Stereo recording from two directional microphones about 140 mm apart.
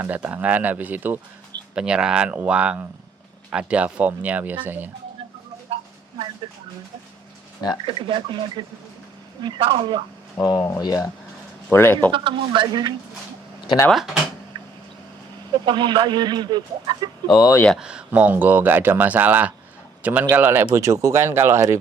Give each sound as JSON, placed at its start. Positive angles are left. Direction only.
{"t": 0.0, "sound": "speech", "side_deg": -10}
{"t": 7.9, "sound": "speech", "side_deg": -35}
{"t": 10.7, "sound": "speech", "side_deg": 25}
{"t": 11.7, "sound": "speech", "side_deg": 15}
{"t": 12.1, "sound": "speech", "side_deg": -35}
{"t": 13.9, "sound": "speech", "side_deg": 0}
{"t": 15.5, "sound": "speech", "side_deg": -35}
{"t": 17.2, "sound": "speech", "side_deg": 30}
{"t": 17.7, "sound": "speech", "side_deg": -5}